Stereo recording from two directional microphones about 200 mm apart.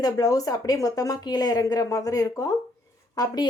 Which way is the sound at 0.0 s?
15° left (ahead or behind).